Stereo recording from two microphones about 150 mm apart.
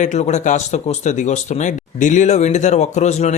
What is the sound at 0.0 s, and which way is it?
Speech, 50° left (ahead or behind).